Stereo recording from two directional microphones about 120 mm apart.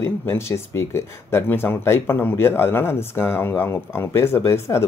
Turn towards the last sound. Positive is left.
turn(degrees=20)  # may be behind; listen again after turning